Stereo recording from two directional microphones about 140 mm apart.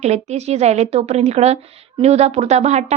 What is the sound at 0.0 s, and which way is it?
A woman's voice, 50° right (ahead or behind).